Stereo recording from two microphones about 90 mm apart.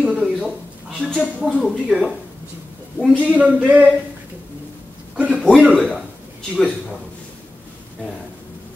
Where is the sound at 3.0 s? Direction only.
15° right (ahead or behind).